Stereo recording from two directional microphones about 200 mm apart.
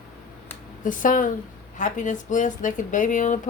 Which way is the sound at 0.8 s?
40° left (ahead or behind).